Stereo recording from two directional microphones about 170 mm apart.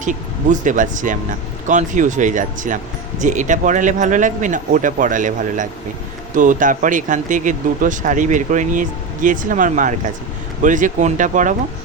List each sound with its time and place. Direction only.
0.0 s speech: 50° right (ahead or behind)